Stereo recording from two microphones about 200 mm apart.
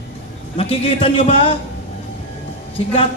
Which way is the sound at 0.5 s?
30° left (ahead or behind).